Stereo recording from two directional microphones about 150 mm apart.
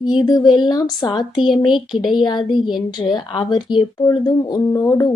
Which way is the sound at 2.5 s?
Centre (ahead or behind).